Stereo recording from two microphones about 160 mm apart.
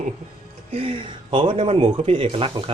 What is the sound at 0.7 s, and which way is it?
Speech, 35° right (ahead or behind).